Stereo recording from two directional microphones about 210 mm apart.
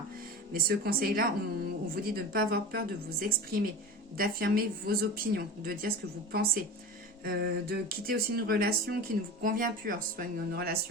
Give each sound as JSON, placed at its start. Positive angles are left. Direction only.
{"t": 0.5, "sound": "speech", "side_deg": -45}